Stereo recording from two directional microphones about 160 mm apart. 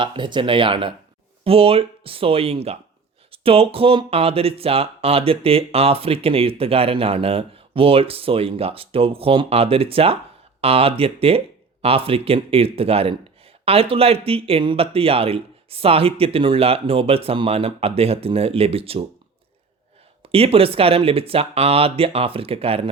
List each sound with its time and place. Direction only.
0.0 s speech: 30° right (ahead or behind)
20.2 s speech: 35° right (ahead or behind)